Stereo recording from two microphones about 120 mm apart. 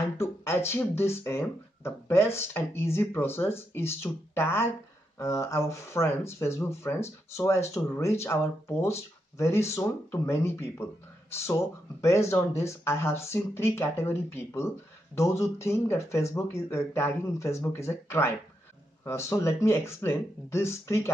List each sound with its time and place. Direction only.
0.2 s speech: 20° left (ahead or behind)